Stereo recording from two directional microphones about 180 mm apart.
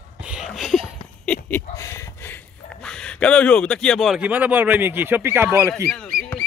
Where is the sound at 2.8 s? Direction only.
5° left (ahead or behind); by 5.7 s 15° right (ahead or behind).